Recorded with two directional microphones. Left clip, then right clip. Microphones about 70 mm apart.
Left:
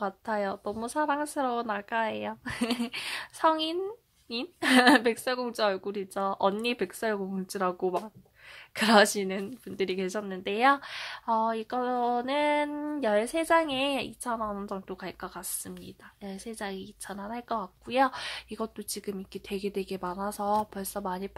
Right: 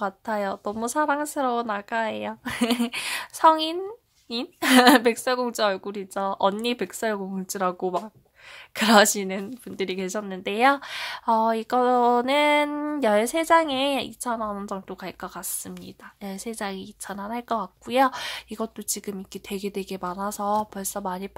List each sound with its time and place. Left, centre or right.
0.0 s speech: right
0.7 s a woman's voice: right
1.2 s speech: right
2.4 s a woman's voice: right
13.4 s speech: right
15.7 s speech: right